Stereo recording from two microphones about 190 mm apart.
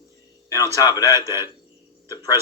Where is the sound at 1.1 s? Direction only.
15° right (ahead or behind).